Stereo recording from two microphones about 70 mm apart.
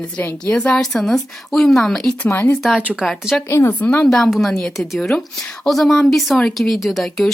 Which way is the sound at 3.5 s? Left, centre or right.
Left.